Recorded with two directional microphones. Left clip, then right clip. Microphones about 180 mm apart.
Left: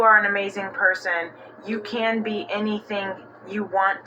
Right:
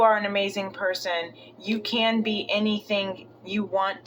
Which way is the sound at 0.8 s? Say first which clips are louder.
Left 6 dB; 20° right (ahead or behind).